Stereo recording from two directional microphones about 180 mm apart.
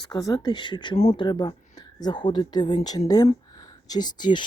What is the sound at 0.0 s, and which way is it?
Speech, 20° left (ahead or behind).